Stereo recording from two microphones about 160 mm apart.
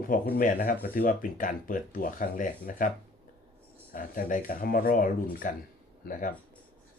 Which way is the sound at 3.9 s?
60° left (ahead or behind).